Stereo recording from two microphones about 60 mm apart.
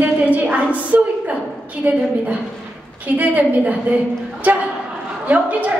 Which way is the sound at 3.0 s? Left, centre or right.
Right.